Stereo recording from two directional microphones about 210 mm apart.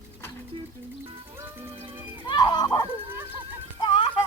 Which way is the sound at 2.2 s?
20° left (ahead or behind).